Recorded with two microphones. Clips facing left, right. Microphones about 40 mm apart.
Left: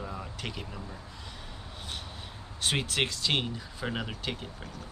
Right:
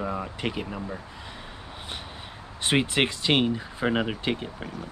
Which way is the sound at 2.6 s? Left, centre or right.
Right.